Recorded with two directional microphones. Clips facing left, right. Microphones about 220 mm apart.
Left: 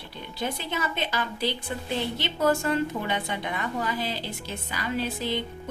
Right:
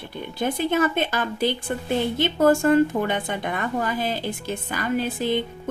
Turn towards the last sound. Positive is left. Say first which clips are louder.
# right 5 dB
turn(degrees=-50)  # may be behind; listen again after turning